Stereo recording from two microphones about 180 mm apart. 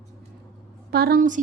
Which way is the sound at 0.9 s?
60° right (ahead or behind).